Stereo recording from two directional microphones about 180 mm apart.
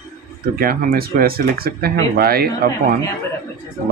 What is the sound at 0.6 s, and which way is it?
Speech, 55° right (ahead or behind).